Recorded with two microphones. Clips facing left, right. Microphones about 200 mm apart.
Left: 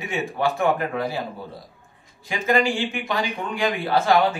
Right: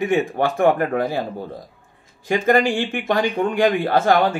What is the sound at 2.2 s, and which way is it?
A man's voice, 55° right (ahead or behind).